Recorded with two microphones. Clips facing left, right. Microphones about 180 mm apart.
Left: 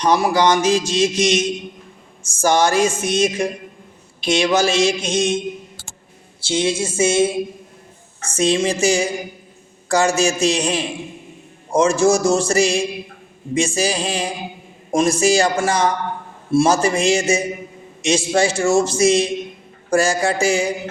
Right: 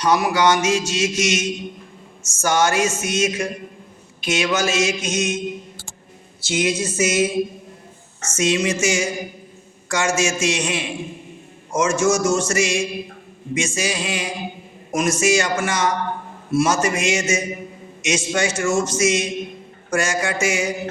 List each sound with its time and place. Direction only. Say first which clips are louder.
0.0 s a man's voice: left 2 dB; 30° left (ahead or behind)
6.4 s a sound: left 2 dB; 30° left (ahead or behind)
8.4 s a man's voice: left 2 dB; 35° left (ahead or behind)